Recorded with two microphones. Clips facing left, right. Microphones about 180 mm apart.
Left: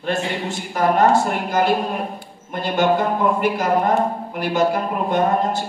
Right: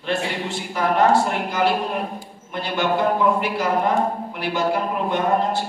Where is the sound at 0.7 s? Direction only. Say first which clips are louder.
Left 2 dB; 45° left (ahead or behind).